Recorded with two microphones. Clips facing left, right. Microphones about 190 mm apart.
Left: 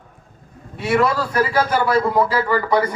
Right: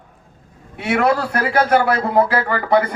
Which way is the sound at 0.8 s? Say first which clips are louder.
Right 1 dB; 60° right (ahead or behind).